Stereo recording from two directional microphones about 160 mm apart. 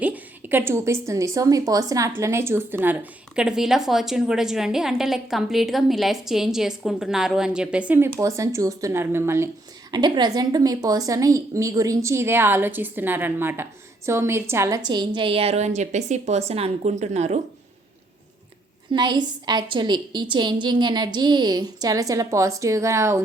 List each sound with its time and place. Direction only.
0.0 s a woman's voice: 10° right (ahead or behind)
9.9 s a woman's voice: 25° right (ahead or behind); by 17.4 s 45° right (ahead or behind)
18.9 s a woman's voice: 25° right (ahead or behind)